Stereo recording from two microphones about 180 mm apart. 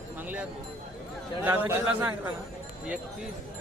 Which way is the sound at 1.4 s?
10° right (ahead or behind).